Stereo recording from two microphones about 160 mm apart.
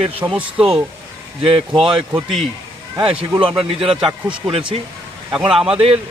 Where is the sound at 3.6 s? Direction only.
35° right (ahead or behind).